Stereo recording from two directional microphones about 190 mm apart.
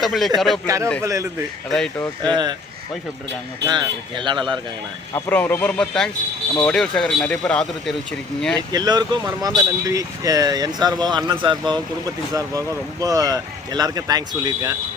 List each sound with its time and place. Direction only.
0.0 s speech: centre (ahead or behind)
1.0 s speech: 15° right (ahead or behind)
1.7 s speech: 5° left (ahead or behind)
2.2 s speech: 20° right (ahead or behind)
3.7 s speech: 25° right (ahead or behind)
5.1 s a man's voice: 10° left (ahead or behind)
8.5 s speech: 20° right (ahead or behind)